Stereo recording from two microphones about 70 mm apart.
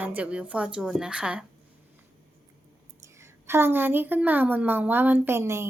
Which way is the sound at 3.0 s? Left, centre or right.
Right.